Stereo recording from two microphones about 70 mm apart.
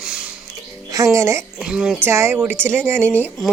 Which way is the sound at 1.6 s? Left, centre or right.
Centre.